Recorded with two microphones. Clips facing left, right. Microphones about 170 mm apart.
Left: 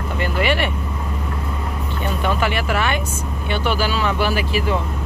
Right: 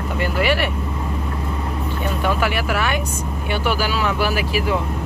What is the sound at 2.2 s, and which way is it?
Speech, 5° right (ahead or behind).